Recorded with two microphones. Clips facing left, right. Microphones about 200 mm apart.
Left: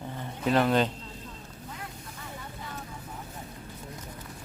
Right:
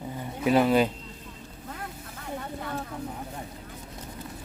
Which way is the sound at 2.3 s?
60° right (ahead or behind).